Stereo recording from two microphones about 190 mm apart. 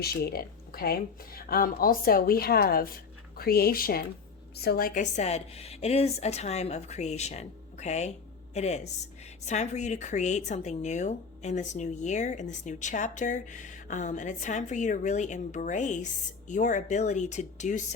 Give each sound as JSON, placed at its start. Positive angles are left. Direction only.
{"t": 0.0, "sound": "speech", "side_deg": 55}